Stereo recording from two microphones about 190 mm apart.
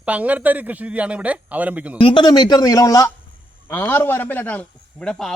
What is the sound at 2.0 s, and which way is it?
Speech, 25° left (ahead or behind).